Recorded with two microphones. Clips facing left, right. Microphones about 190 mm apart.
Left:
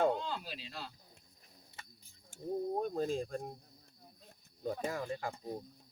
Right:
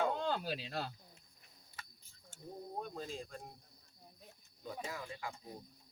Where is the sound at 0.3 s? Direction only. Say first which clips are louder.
Right 5 dB; 55° right (ahead or behind).